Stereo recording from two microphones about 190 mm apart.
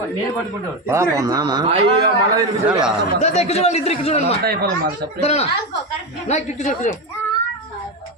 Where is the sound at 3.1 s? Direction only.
35° left (ahead or behind).